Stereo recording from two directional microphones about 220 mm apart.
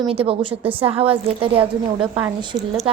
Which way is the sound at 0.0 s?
25° right (ahead or behind).